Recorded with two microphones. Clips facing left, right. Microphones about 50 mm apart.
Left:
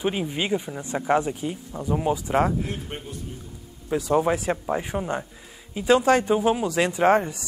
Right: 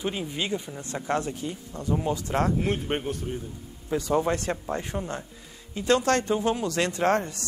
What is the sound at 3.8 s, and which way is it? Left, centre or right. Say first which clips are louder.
A man's voice: left 3 dB; centre.